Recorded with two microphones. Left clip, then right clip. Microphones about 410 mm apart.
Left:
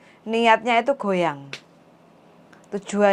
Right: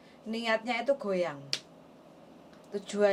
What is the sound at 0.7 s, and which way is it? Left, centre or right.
Speech, left.